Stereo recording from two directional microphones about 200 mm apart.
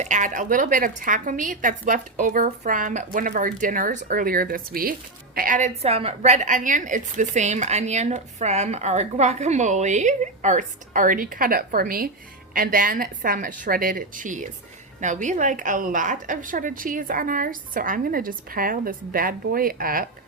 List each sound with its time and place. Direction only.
0.0 s a woman's voice: 40° right (ahead or behind)